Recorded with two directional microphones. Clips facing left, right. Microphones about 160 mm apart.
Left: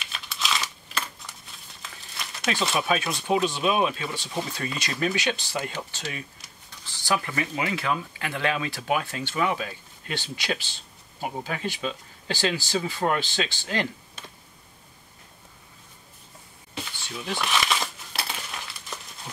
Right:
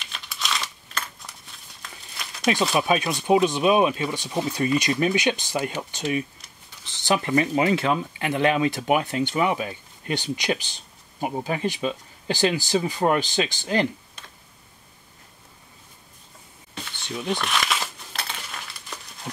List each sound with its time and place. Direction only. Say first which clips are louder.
0.0 s crumpling: left 1 dB; centre (ahead or behind)
2.5 s speech: right 4 dB; 15° right (ahead or behind)
16.7 s a sound: right 3 dB; 5° left (ahead or behind)
17.4 s crumpling: even; centre (ahead or behind)